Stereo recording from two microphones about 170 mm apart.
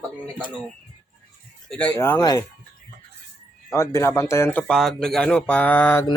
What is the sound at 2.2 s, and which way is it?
Speech, 25° left (ahead or behind).